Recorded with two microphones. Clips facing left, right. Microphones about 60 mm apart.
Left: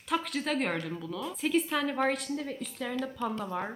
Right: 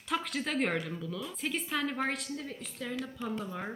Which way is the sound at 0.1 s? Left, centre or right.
Centre.